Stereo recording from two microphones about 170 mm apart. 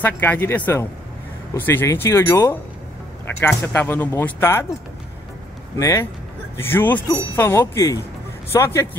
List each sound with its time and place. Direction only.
0.0 s speech: 10° left (ahead or behind)
5.8 s speech: 15° left (ahead or behind)